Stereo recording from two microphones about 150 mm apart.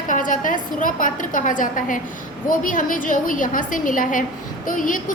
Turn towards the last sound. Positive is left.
turn(degrees=60)  # may be behind; listen again after turning